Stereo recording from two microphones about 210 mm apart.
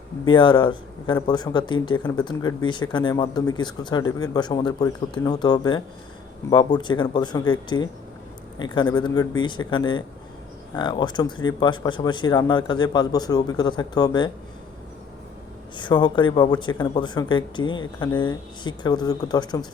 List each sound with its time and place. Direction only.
0.3 s speech: 20° left (ahead or behind)
15.8 s speech: 20° left (ahead or behind)